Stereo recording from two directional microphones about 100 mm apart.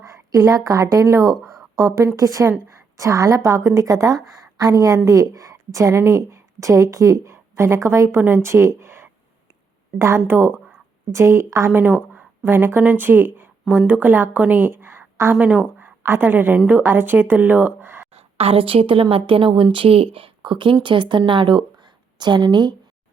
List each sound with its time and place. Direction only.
0.0 s a woman's voice: 30° right (ahead or behind)
18.1 s a woman's voice: 90° right; by 22.7 s 45° right (ahead or behind)